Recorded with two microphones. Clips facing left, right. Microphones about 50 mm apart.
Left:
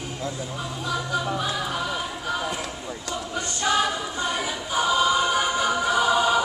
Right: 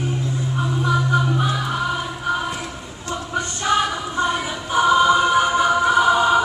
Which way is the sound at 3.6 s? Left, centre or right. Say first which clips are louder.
Right 2 dB; right.